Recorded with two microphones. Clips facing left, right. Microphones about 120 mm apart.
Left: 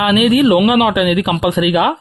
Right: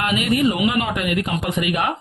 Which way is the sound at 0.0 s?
90° left.